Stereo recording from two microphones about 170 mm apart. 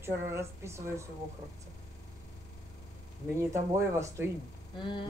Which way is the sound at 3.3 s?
15° right (ahead or behind).